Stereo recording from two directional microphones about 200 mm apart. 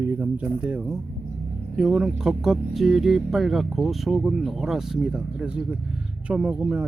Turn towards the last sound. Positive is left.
turn(degrees=-5)  # may be behind; listen again after turning